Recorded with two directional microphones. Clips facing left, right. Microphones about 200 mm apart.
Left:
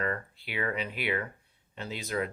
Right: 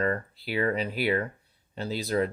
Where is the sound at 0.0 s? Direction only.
35° right (ahead or behind).